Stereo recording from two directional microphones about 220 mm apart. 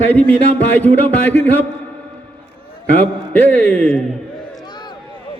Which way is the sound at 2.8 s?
5° left (ahead or behind).